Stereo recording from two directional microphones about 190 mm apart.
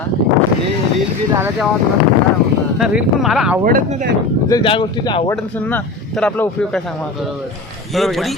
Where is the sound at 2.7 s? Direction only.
5° right (ahead or behind).